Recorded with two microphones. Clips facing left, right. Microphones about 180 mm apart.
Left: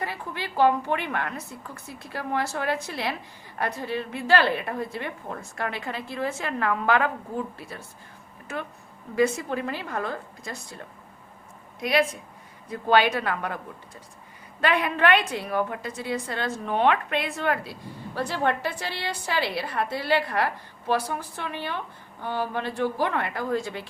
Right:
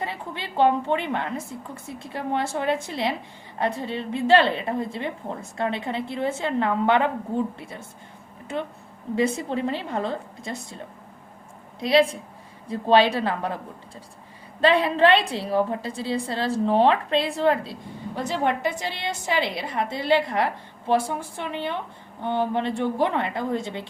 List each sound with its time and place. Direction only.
0.0 s a woman's voice: 25° right (ahead or behind)
9.1 s a woman's voice: 25° right (ahead or behind)